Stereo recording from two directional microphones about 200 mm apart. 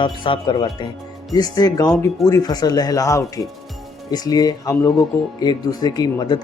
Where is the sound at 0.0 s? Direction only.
25° left (ahead or behind).